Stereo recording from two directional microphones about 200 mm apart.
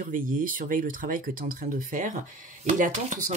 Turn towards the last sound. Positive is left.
turn(degrees=-40)  # may be behind; listen again after turning